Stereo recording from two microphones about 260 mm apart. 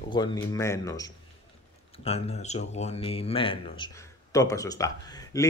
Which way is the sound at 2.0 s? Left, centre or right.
Left.